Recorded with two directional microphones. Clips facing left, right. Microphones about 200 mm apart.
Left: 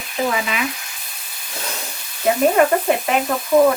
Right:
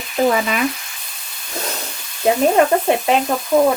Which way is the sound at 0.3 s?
45° right (ahead or behind).